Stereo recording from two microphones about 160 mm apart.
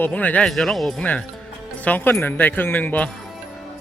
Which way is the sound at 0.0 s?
10° left (ahead or behind).